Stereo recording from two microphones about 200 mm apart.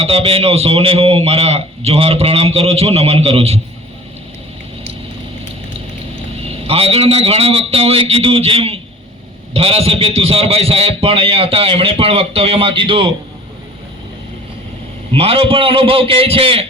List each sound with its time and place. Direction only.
0.0 s a man's voice: 30° right (ahead or behind)
6.7 s a man's voice: 30° right (ahead or behind)
15.1 s a man's voice: 30° right (ahead or behind)